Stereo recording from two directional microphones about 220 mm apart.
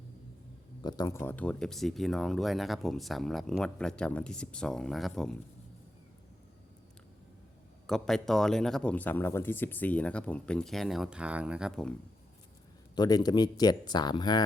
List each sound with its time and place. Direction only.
0.8 s speech: 20° left (ahead or behind); by 5.4 s centre (ahead or behind)
7.9 s speech: centre (ahead or behind)
13.0 s speech: 20° left (ahead or behind)